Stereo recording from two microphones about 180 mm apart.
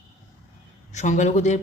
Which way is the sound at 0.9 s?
40° left (ahead or behind).